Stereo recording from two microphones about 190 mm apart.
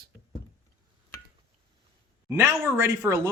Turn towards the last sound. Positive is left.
turn(degrees=-20)  # may be behind; listen again after turning